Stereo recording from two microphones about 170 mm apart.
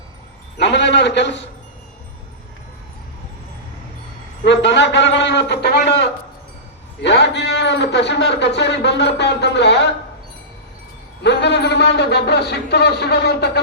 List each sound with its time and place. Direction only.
0.6 s a man's voice: 90° left
4.4 s a man's voice: 90° left
11.2 s speech: 90° left